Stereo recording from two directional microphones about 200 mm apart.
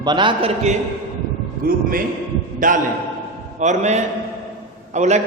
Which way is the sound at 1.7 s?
45° right (ahead or behind).